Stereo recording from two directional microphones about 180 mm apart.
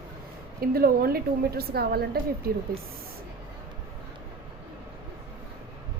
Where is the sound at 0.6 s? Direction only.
55° right (ahead or behind).